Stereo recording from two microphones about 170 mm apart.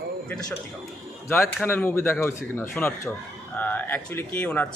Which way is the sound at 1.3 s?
15° left (ahead or behind).